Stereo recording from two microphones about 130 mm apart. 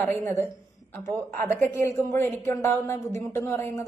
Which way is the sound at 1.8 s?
20° left (ahead or behind).